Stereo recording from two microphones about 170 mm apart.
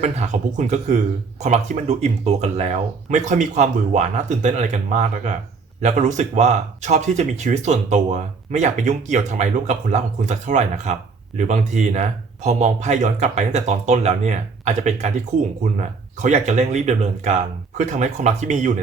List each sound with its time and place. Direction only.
0.0 s speech: 45° right (ahead or behind)
16.1 s speech: 45° right (ahead or behind)